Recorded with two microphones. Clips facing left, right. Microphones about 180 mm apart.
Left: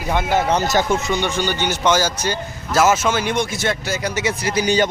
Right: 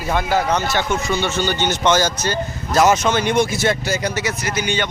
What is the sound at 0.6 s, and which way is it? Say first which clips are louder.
Speech: left 3 dB; 40° left (ahead or behind).